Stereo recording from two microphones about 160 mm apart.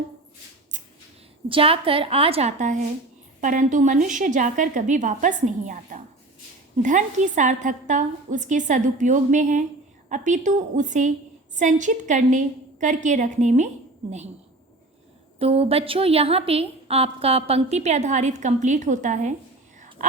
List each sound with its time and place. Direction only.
1.5 s a woman's voice: 35° right (ahead or behind)
15.4 s a woman's voice: 40° right (ahead or behind)